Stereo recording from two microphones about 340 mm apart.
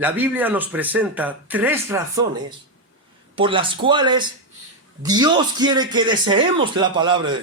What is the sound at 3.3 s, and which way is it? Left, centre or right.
A man's voice, centre.